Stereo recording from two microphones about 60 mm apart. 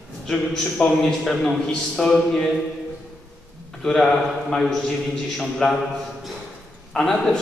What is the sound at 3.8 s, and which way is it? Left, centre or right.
A man's voice, centre.